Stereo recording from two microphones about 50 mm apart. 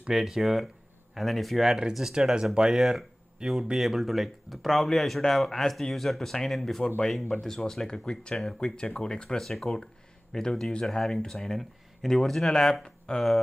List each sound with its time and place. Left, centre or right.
0.0 s speech: centre
3.7 s speech: centre
9.4 s speech: centre